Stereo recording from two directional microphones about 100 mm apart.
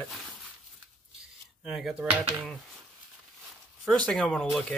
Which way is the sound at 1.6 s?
5° right (ahead or behind).